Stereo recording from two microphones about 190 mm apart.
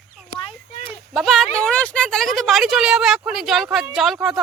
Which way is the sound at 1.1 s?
Centre (ahead or behind).